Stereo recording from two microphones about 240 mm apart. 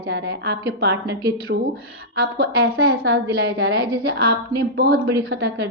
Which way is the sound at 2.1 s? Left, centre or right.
Right.